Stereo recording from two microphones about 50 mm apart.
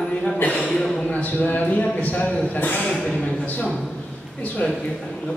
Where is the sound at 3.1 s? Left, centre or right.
Left.